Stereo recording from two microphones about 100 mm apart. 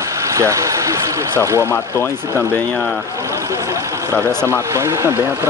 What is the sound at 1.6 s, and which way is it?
Speech, 25° left (ahead or behind).